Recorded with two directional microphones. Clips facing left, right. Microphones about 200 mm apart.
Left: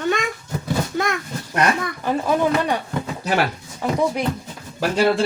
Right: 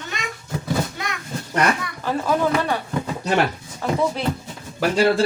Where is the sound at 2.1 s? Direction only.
15° left (ahead or behind).